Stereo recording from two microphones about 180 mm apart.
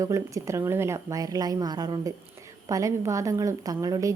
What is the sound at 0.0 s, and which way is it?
A woman's voice, 15° right (ahead or behind).